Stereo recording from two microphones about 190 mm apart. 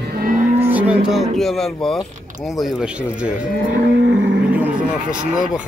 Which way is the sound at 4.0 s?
70° right (ahead or behind).